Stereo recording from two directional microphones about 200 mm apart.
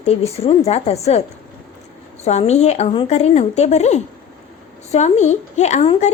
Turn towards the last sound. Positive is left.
turn(degrees=30)  # may be behind; listen again after turning